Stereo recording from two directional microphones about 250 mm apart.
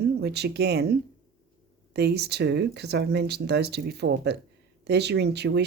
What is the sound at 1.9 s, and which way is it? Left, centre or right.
Speech, right.